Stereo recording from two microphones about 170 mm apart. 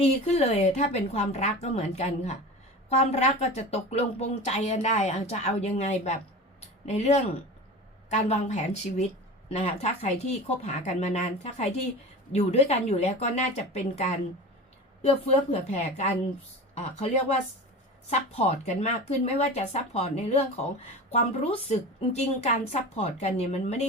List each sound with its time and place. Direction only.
0.0 s speech: 40° left (ahead or behind)